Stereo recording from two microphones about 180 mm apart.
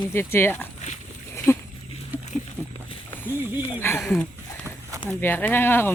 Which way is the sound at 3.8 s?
10° left (ahead or behind).